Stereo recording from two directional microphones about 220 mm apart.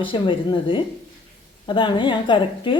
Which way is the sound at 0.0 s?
20° left (ahead or behind).